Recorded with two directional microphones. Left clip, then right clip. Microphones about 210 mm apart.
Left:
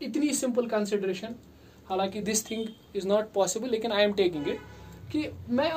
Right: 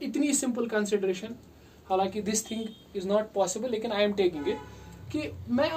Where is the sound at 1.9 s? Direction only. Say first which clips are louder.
Right 1 dB; 30° left (ahead or behind).